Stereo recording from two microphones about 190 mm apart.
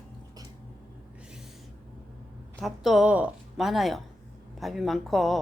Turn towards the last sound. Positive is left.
turn(degrees=0)  # may be behind; listen again after turning